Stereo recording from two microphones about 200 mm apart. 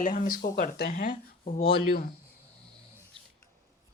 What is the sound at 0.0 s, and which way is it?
Speech, 45° left (ahead or behind).